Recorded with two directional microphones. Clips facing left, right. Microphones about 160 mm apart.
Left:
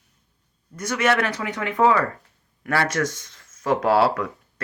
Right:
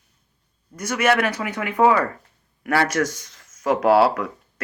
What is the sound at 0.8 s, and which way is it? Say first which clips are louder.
Speech: right 2 dB; 20° right (ahead or behind).